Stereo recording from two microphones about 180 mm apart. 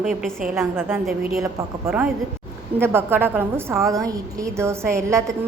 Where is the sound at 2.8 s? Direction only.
15° right (ahead or behind).